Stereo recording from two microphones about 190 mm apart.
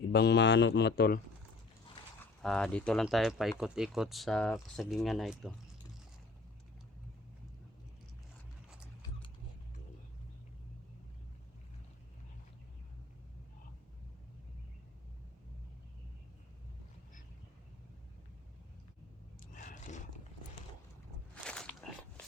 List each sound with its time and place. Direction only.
0.1 s speech: 60° left (ahead or behind)
2.4 s speech: 5° left (ahead or behind)
19.4 s a sound: 45° left (ahead or behind)
21.4 s biting: 5° left (ahead or behind)